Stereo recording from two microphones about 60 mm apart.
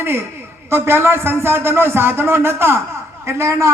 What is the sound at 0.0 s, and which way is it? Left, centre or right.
A man's voice, right.